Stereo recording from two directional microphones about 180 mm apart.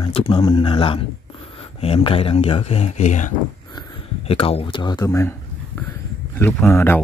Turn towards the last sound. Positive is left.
turn(degrees=10)  # may be behind; listen again after turning